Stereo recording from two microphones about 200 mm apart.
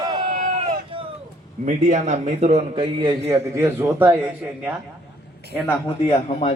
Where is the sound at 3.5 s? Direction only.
15° right (ahead or behind).